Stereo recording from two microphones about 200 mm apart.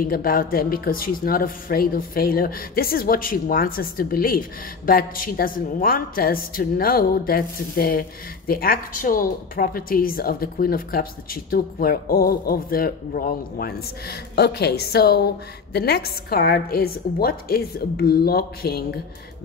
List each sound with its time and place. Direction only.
0.0 s a woman's voice: 45° left (ahead or behind)